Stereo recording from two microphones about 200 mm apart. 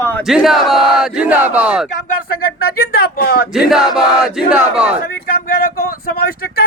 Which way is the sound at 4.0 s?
5° right (ahead or behind).